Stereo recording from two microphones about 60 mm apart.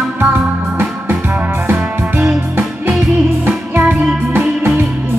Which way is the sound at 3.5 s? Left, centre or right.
Right.